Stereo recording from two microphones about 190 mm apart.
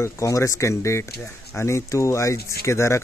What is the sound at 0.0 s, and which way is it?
Speech, 15° left (ahead or behind).